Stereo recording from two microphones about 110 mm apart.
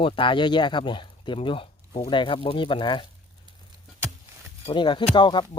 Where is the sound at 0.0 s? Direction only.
50° left (ahead or behind).